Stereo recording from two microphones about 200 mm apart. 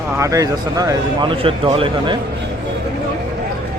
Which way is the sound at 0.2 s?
15° right (ahead or behind).